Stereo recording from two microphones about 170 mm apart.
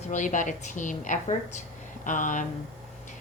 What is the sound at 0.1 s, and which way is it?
Speech, 45° left (ahead or behind).